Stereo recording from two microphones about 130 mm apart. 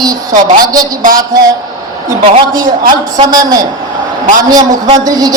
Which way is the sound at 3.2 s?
30° right (ahead or behind).